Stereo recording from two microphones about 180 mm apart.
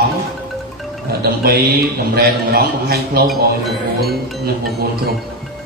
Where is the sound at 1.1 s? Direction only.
60° right (ahead or behind).